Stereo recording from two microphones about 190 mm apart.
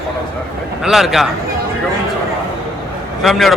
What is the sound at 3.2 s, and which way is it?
Speech, centre (ahead or behind).